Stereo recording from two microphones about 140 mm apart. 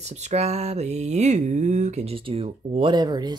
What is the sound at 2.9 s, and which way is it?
Speech, 30° right (ahead or behind).